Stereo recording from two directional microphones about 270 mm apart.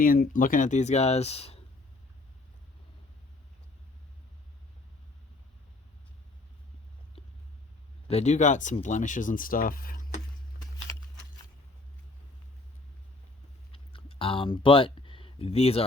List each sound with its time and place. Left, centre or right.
0.0 s speech: left
8.0 s speech: left
13.7 s a sound: centre